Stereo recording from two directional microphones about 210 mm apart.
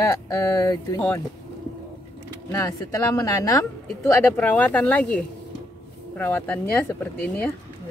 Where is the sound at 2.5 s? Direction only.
15° left (ahead or behind).